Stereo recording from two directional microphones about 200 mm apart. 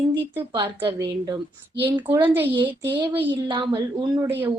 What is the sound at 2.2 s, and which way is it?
Speech, 10° right (ahead or behind).